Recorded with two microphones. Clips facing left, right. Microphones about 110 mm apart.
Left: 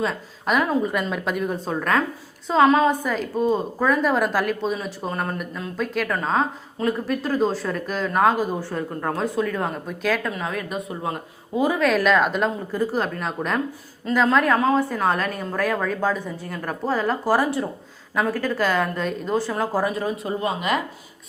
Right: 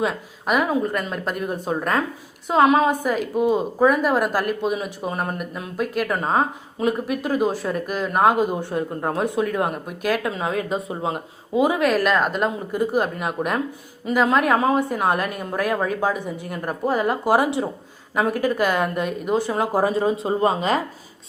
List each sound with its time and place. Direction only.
0.0 s a woman's voice: 5° right (ahead or behind)
10.3 s speech: 25° right (ahead or behind)
11.0 s speech: 20° right (ahead or behind)
11.9 s a woman's voice: 5° right (ahead or behind)
12.7 s speech: 15° right (ahead or behind); by 20.8 s 35° right (ahead or behind)